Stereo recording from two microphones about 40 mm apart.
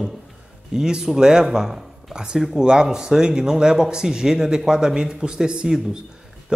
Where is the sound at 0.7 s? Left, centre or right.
Centre.